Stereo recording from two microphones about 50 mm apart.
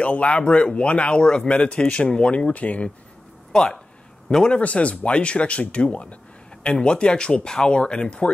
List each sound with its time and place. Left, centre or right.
0.0 s speech: left
4.3 s speech: centre
4.6 s speech: left